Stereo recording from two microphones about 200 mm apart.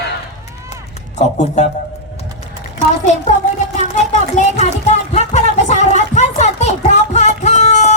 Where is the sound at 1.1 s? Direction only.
35° left (ahead or behind).